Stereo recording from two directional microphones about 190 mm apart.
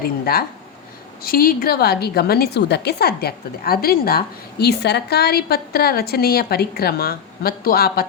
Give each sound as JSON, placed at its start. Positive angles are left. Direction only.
{"t": 0.0, "sound": "a woman's voice", "side_deg": 50}